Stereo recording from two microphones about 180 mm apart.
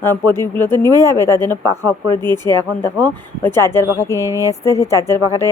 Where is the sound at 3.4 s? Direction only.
10° left (ahead or behind).